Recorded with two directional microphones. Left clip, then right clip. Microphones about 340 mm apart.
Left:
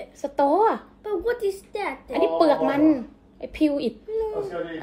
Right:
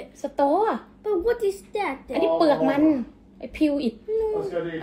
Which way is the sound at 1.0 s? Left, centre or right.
Centre.